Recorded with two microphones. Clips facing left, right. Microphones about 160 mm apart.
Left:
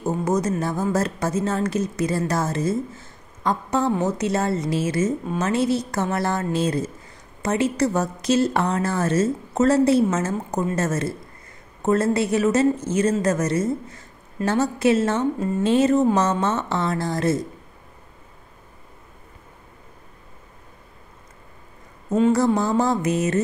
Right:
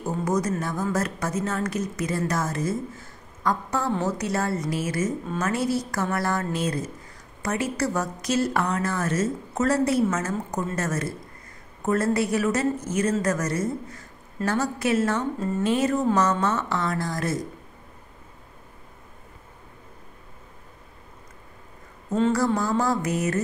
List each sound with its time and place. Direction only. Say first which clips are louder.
0.0 s a woman's voice: left 3 dB; 25° left (ahead or behind)
22.3 s a woman's voice: left 4 dB; 20° left (ahead or behind)